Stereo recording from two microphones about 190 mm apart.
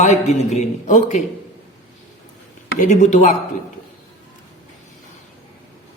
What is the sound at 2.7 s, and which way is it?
Speech, 40° left (ahead or behind).